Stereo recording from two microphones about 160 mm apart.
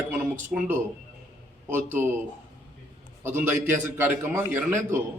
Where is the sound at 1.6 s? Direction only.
15° right (ahead or behind).